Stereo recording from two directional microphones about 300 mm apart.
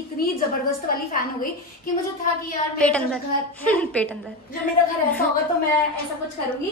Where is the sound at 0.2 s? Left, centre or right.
Left.